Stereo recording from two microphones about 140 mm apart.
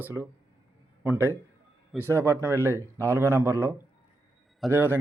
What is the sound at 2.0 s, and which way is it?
Speech, 20° right (ahead or behind).